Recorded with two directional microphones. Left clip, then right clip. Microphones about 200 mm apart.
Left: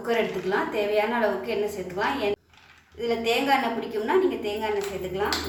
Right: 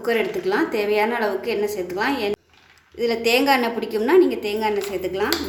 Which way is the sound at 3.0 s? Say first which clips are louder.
Right 6 dB; 55° right (ahead or behind).